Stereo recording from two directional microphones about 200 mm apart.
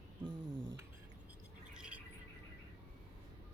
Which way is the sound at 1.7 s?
5° right (ahead or behind).